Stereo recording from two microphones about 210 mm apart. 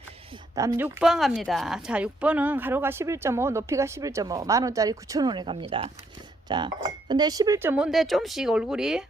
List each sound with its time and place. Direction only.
0.5 s speech: 15° right (ahead or behind)